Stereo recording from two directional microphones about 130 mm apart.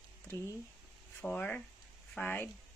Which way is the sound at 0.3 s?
20° left (ahead or behind).